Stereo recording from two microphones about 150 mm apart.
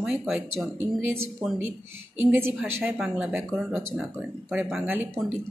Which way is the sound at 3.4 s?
Centre (ahead or behind).